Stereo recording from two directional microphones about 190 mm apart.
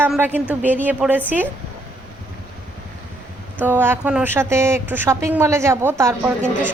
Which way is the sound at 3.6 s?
10° right (ahead or behind).